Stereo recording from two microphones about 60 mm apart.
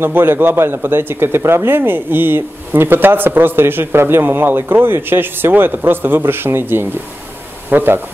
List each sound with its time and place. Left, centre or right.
0.0 s speech: right